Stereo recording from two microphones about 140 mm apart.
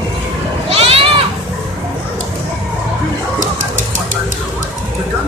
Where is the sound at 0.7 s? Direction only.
45° right (ahead or behind).